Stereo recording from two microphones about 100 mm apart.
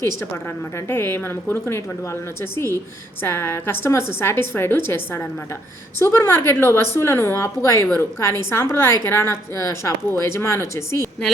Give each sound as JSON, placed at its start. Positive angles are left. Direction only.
{"t": 0.9, "sound": "a woman's voice", "side_deg": 25}